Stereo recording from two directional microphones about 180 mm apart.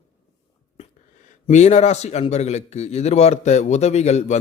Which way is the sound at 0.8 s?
40° left (ahead or behind).